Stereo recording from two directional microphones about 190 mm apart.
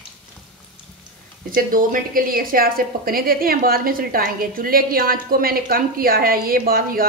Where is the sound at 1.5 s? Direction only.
45° right (ahead or behind).